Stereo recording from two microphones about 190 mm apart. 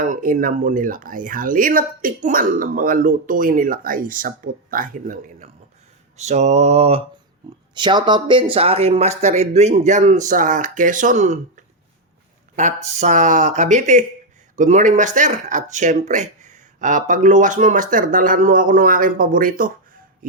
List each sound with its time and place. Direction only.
0.0 s speech: 45° right (ahead or behind)